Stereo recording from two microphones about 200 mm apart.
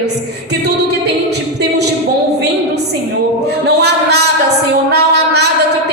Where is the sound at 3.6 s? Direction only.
55° right (ahead or behind).